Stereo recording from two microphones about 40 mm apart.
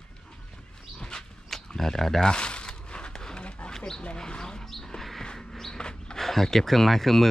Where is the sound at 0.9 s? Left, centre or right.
Centre.